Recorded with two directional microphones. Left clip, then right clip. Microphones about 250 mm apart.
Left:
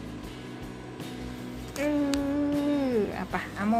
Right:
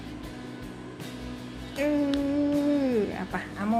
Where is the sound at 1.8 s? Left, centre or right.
Centre.